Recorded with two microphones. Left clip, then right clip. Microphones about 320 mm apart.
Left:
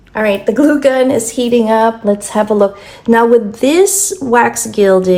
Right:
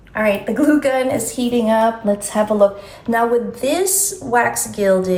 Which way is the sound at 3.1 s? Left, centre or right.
Centre.